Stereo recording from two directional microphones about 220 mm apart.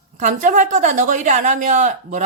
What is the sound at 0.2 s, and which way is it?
Speech, 35° right (ahead or behind).